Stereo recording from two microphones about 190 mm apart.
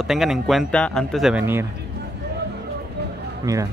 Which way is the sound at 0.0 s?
Centre (ahead or behind).